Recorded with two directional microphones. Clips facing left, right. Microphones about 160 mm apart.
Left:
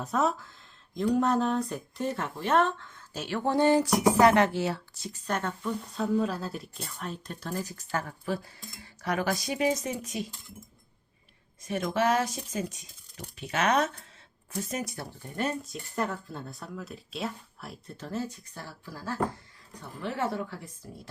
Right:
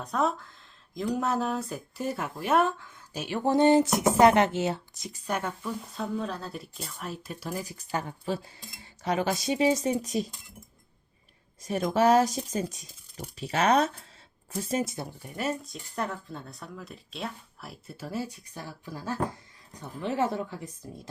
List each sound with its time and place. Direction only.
0.0 s speech: centre (ahead or behind); by 10.3 s 40° right (ahead or behind)
11.6 s a woman's voice: 35° right (ahead or behind)
15.2 s a woman's voice: 5° right (ahead or behind)